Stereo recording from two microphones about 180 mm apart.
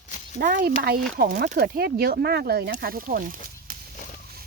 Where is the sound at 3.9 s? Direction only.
45° left (ahead or behind).